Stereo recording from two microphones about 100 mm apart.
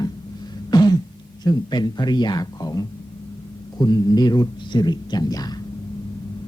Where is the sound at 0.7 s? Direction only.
40° left (ahead or behind).